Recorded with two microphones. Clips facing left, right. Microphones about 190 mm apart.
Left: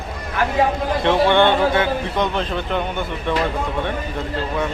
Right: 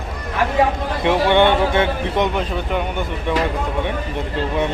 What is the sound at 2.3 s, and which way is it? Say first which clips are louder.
Speech: right 1 dB; 10° right (ahead or behind).